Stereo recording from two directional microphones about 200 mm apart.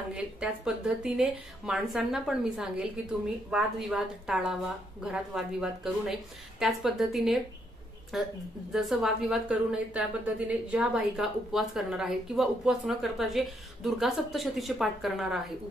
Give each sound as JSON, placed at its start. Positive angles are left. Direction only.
{"t": 0.1, "sound": "a woman's voice", "side_deg": -5}